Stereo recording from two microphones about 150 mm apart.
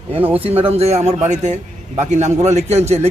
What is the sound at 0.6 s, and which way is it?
A man's voice, 45° right (ahead or behind).